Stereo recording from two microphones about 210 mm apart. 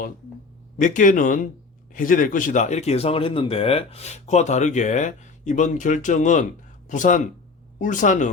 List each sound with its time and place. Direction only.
0.8 s speech: 40° left (ahead or behind)